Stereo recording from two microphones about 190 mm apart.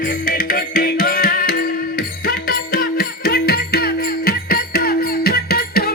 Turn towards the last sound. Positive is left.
turn(degrees=55)  # may be behind; listen again after turning